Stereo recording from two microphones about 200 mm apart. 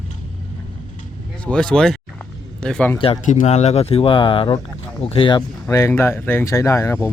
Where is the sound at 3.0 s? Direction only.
30° left (ahead or behind); by 7.1 s 15° left (ahead or behind).